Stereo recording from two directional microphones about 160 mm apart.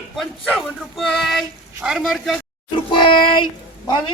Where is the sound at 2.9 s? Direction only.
30° left (ahead or behind).